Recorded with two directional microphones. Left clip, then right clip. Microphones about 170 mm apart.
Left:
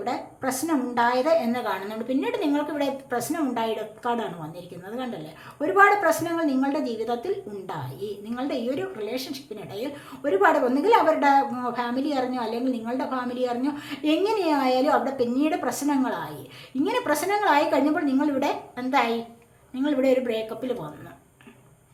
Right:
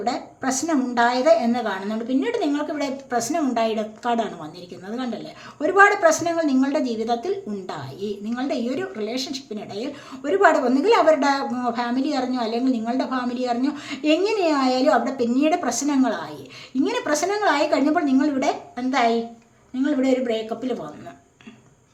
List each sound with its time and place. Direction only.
0.0 s a woman's voice: 20° right (ahead or behind)
5.5 s a woman's voice: 20° right (ahead or behind)
8.4 s a woman's voice: 20° right (ahead or behind)